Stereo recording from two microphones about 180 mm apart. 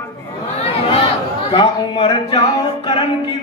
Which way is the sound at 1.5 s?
30° left (ahead or behind).